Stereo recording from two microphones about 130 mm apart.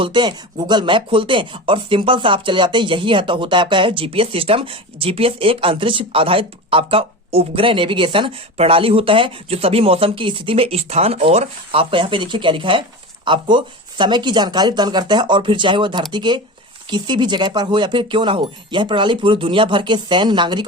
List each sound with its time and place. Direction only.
0.0 s speech: 35° right (ahead or behind)